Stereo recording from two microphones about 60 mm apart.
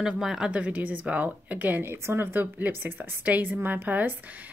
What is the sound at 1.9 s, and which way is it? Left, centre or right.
A woman's voice, right.